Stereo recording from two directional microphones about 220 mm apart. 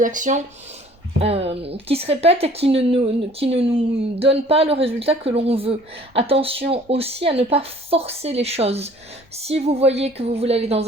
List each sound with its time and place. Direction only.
0.0 s a woman's voice: 35° right (ahead or behind)